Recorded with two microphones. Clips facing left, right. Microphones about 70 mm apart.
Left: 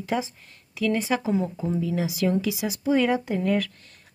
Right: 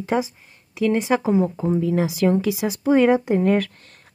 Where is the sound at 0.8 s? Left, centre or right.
Right.